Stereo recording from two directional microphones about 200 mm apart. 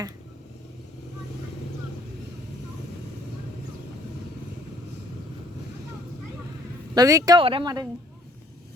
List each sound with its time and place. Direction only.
6.9 s speech: 15° right (ahead or behind)